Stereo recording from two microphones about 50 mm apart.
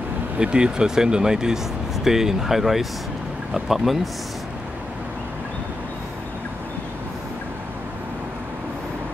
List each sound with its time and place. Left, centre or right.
0.4 s speech: centre